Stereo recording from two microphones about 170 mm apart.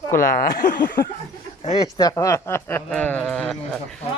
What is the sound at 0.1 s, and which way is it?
Speech, 60° left (ahead or behind).